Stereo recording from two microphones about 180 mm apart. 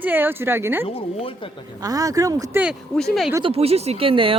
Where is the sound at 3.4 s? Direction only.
35° right (ahead or behind).